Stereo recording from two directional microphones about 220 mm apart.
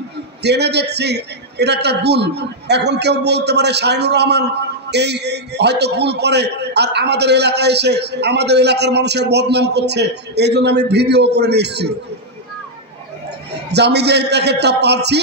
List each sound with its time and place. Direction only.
0.4 s a man's voice: 50° right (ahead or behind)
13.7 s a man's voice: 50° right (ahead or behind)